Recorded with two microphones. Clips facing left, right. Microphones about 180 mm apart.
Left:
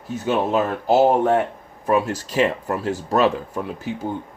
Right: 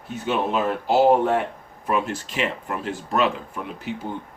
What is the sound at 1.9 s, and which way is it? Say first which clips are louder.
Speech: left 4 dB; 40° left (ahead or behind).